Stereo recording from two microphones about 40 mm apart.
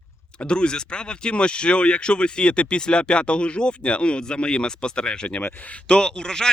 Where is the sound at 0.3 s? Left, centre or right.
Left.